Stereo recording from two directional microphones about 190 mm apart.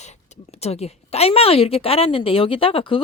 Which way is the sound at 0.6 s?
35° left (ahead or behind).